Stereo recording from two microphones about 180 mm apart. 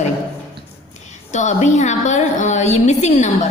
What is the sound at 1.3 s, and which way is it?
A woman's voice, 40° left (ahead or behind).